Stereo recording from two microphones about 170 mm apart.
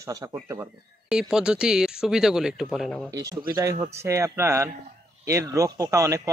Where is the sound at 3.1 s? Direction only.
20° right (ahead or behind).